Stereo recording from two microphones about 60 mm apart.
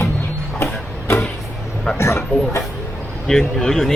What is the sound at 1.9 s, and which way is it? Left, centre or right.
Speech, left.